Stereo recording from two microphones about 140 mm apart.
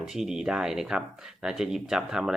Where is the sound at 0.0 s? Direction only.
Centre (ahead or behind).